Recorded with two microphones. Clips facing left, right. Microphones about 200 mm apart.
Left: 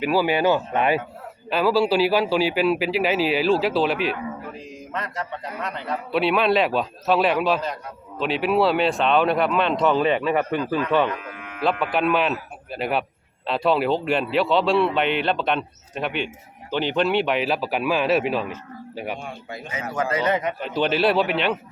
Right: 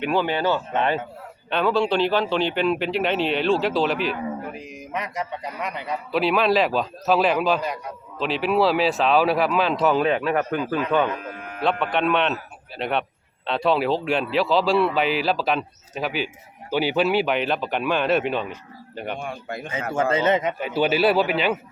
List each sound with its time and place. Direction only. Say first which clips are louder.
0.0 s speech: left 2 dB; 5° left (ahead or behind)
4.9 s a man's voice: right 1 dB; 15° right (ahead or behind)
6.1 s speech: even; centre (ahead or behind)
11.2 s a sound: right 2 dB; 40° right (ahead or behind)
11.6 s speech: even; centre (ahead or behind)
19.2 s speech: right 3 dB; 55° right (ahead or behind)
19.9 s speech: right 2 dB; 25° right (ahead or behind)
20.6 s speech: right 1 dB; 5° right (ahead or behind)